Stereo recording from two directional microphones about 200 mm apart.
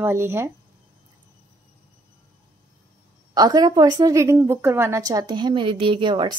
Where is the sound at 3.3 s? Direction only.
20° right (ahead or behind).